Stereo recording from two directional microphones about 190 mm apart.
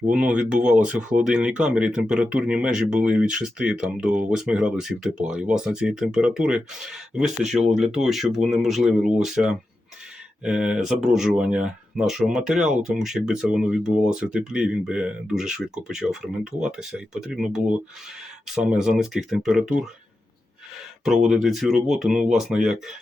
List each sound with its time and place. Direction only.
0.1 s speech: 5° right (ahead or behind)
7.5 s speech: 35° right (ahead or behind)
7.8 s speech: centre (ahead or behind)
21.2 s speech: centre (ahead or behind)